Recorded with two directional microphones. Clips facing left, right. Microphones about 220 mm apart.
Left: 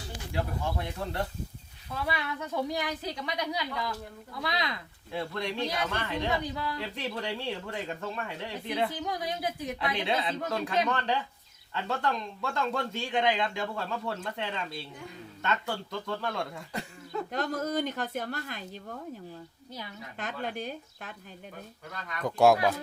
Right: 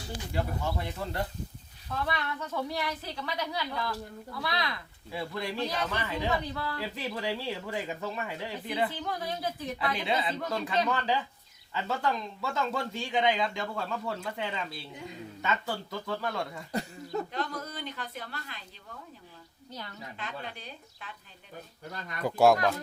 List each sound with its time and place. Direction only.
0.3 s speech: 5° right (ahead or behind)
1.9 s a woman's voice: 10° left (ahead or behind)
5.1 s speech: 5° right (ahead or behind)
5.6 s a woman's voice: 10° left (ahead or behind)
5.9 s speech: 5° right (ahead or behind)
6.2 s a woman's voice: 15° left (ahead or behind)
6.7 s speech: 5° right (ahead or behind)
8.9 s a woman's voice: 15° left (ahead or behind)
9.9 s speech: centre (ahead or behind)
17.3 s a woman's voice: 45° left (ahead or behind)
19.7 s a woman's voice: 10° left (ahead or behind)
20.1 s a woman's voice: 45° left (ahead or behind)
22.2 s speech: 5° right (ahead or behind)